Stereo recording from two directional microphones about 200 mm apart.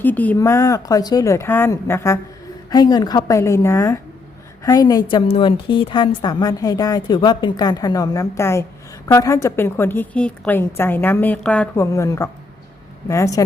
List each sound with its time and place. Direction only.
0.0 s a woman's voice: 10° left (ahead or behind)